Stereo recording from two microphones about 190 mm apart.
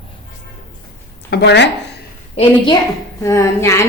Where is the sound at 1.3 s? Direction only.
65° left (ahead or behind).